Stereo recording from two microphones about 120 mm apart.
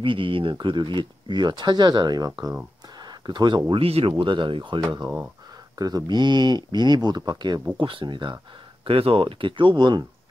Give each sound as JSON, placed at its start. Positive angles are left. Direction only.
{"t": 0.0, "sound": "speech", "side_deg": -45}
{"t": 7.7, "sound": "speech", "side_deg": -45}
{"t": 8.8, "sound": "speech", "side_deg": -50}